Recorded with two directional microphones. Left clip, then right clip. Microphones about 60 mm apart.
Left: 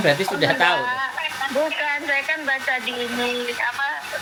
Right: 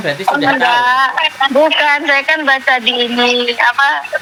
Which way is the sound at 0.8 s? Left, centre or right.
Right.